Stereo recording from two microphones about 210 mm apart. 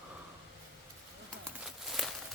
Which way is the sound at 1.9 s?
Centre (ahead or behind).